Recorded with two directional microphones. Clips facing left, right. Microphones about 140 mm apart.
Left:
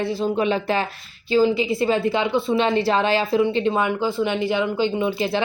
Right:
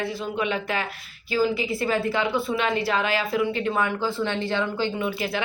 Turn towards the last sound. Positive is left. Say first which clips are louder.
# left 5 dB
turn(degrees=25)  # may be behind; listen again after turning